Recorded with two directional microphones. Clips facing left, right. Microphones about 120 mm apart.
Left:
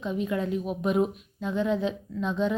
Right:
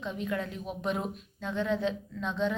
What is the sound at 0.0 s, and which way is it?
Speech, 20° left (ahead or behind).